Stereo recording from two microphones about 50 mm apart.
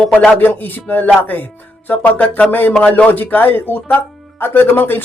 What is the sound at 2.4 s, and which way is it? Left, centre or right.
Speech, left.